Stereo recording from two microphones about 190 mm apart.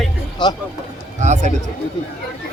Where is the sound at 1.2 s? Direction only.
40° right (ahead or behind).